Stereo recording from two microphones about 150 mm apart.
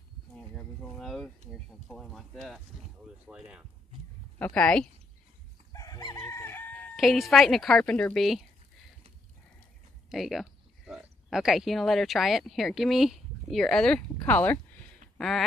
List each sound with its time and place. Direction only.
0.6 s a sound: 5° left (ahead or behind)
1.5 s speech: centre (ahead or behind)
4.4 s speech: 5° left (ahead or behind)
5.7 s chicken: 25° left (ahead or behind)
7.0 s speech: centre (ahead or behind)
10.0 s speech: centre (ahead or behind)